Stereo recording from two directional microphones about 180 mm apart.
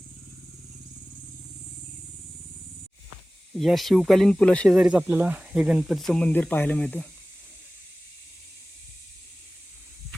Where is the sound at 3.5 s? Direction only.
Centre (ahead or behind).